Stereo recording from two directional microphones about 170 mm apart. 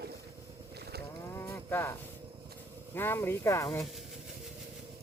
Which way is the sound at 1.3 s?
15° left (ahead or behind).